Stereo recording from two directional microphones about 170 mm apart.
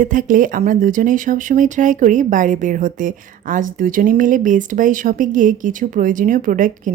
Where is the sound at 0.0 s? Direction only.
50° right (ahead or behind).